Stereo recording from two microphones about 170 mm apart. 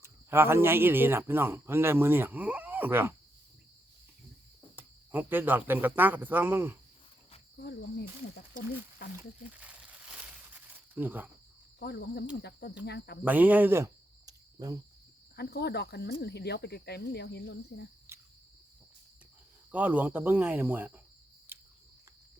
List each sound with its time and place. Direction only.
0.0 s speech: 15° right (ahead or behind)
4.8 s speech: 10° right (ahead or behind)
7.6 s speech: 75° left (ahead or behind)
9.4 s crumpling: 10° right (ahead or behind)
11.8 s speech: 75° left (ahead or behind)
13.2 s speech: 10° right (ahead or behind)
15.4 s speech: 70° left (ahead or behind); by 17.8 s 90° left
18.1 s cricket: 15° right (ahead or behind)
19.7 s speech: 10° right (ahead or behind)
21.5 s a sound: 15° right (ahead or behind)